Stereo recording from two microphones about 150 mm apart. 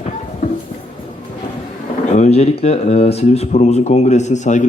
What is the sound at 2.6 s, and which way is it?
Speech, 45° left (ahead or behind).